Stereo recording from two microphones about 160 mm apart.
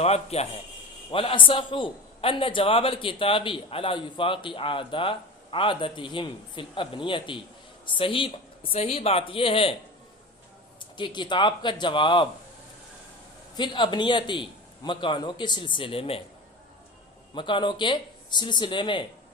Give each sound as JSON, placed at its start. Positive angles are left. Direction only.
{"t": 0.0, "sound": "a man's voice", "side_deg": 40}
{"t": 10.8, "sound": "speech", "side_deg": 30}
{"t": 13.6, "sound": "a man's voice", "side_deg": 30}
{"t": 17.3, "sound": "speech", "side_deg": 30}